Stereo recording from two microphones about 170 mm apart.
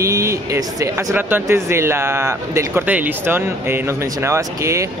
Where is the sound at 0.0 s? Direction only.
15° right (ahead or behind).